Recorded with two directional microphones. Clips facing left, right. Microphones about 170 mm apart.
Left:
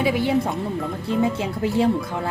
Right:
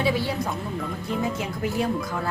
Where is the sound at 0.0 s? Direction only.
15° left (ahead or behind).